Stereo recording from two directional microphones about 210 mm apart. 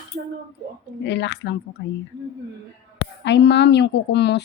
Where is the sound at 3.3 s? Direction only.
55° left (ahead or behind).